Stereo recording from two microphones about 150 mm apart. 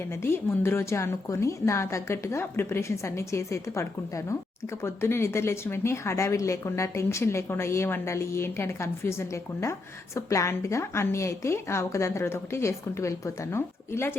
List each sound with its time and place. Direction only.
0.2 s a woman's voice: 15° left (ahead or behind)